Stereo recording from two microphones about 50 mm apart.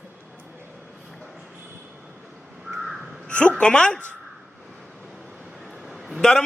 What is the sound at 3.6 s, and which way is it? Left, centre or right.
Speech, centre.